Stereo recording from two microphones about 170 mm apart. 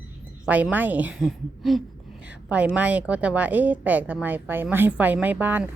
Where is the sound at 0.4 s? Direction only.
10° right (ahead or behind).